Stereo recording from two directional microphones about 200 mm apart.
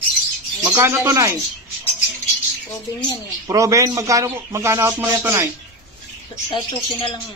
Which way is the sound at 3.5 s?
15° right (ahead or behind).